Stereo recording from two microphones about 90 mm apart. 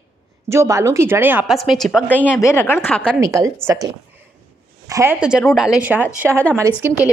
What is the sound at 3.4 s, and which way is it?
Speech, 35° right (ahead or behind).